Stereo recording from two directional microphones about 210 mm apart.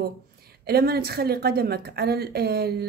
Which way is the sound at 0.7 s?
50° right (ahead or behind).